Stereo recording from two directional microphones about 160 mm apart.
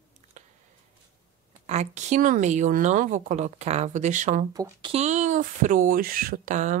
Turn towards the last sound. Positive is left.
turn(degrees=-50)  # may be behind; listen again after turning